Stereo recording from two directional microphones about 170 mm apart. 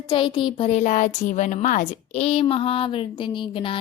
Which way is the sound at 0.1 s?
30° left (ahead or behind).